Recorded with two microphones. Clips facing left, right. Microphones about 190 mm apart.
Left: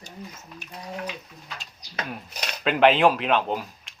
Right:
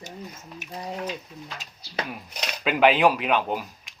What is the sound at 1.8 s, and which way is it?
Speech, 15° left (ahead or behind).